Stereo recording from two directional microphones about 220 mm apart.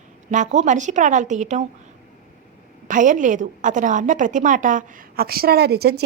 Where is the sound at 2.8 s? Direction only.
35° right (ahead or behind).